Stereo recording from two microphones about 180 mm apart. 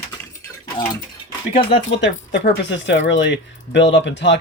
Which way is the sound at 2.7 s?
90° left.